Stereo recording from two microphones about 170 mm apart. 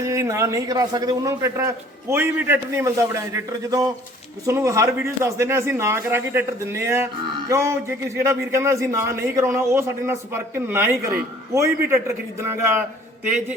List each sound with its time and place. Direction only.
0.0 s a man's voice: 15° right (ahead or behind)